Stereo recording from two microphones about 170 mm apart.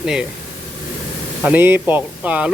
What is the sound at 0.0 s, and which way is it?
Speech, 5° right (ahead or behind).